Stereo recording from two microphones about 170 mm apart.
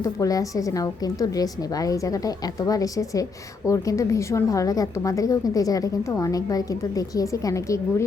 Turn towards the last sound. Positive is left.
turn(degrees=20)  # may be behind; listen again after turning